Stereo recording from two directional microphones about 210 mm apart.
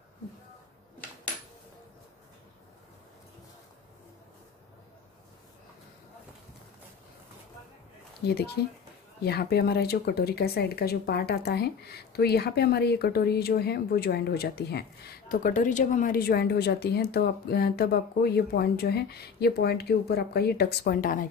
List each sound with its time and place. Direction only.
8.6 s speech: 50° left (ahead or behind)